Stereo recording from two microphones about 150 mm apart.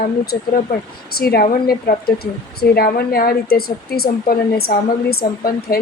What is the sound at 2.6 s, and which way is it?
A woman's voice, 90° left.